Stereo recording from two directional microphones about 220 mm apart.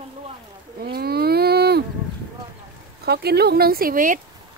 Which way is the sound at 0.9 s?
45° right (ahead or behind).